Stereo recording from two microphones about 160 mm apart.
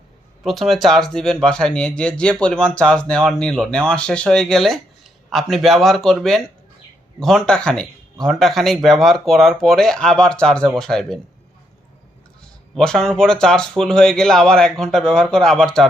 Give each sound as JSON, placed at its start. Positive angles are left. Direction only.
{"t": 0.4, "sound": "speech", "side_deg": 0}
{"t": 12.7, "sound": "speech", "side_deg": 5}